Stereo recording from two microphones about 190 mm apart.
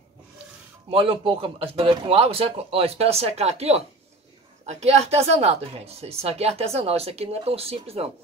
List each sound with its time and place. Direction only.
0.8 s speech: 30° right (ahead or behind)